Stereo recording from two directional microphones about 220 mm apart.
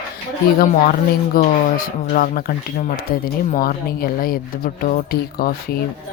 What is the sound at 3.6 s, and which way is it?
Speech, 40° left (ahead or behind).